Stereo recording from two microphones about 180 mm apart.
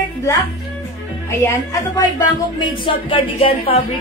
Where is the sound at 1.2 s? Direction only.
15° left (ahead or behind).